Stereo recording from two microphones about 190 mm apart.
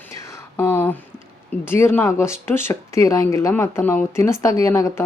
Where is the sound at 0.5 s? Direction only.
10° left (ahead or behind).